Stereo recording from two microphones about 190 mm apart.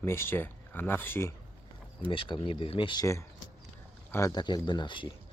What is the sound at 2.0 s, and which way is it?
Speech, 25° left (ahead or behind).